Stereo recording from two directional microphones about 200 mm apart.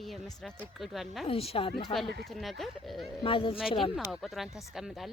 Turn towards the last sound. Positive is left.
turn(degrees=0)  # may be behind; listen again after turning